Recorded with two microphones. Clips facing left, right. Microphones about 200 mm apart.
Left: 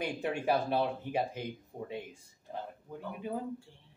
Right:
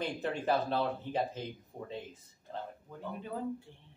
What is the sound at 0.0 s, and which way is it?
Speech, 10° left (ahead or behind).